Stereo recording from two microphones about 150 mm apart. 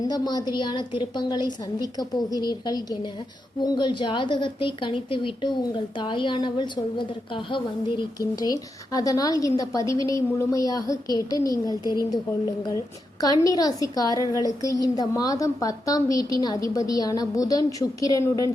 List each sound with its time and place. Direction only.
0.0 s a woman's voice: 25° left (ahead or behind)
13.2 s a woman's voice: 25° left (ahead or behind)